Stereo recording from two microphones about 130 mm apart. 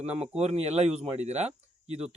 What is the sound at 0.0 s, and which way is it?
Speech, 55° right (ahead or behind).